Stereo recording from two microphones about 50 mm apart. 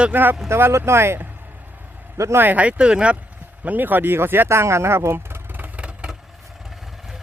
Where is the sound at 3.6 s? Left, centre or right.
Right.